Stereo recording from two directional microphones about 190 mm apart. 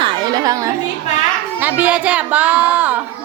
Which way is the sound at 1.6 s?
5° right (ahead or behind).